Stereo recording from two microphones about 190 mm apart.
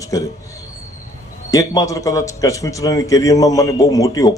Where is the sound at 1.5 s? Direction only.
15° left (ahead or behind).